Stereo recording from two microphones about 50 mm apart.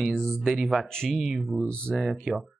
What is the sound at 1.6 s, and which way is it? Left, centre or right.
Speech, left.